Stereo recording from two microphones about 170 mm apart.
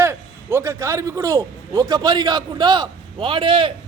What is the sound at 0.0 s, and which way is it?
A man's voice, 15° right (ahead or behind).